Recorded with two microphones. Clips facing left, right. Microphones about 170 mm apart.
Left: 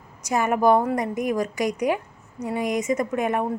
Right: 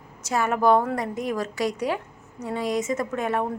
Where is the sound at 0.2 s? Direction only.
15° left (ahead or behind).